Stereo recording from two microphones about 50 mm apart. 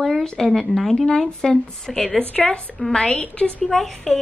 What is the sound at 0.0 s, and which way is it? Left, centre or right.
Speech, centre.